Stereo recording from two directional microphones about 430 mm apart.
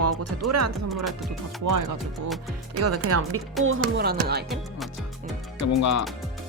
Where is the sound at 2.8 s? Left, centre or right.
Right.